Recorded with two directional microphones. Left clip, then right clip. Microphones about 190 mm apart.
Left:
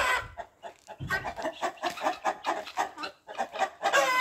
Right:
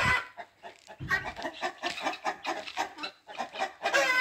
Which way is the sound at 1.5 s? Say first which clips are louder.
Left 2 dB; 20° right (ahead or behind).